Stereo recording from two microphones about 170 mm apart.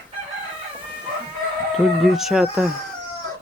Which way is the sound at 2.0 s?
Centre (ahead or behind).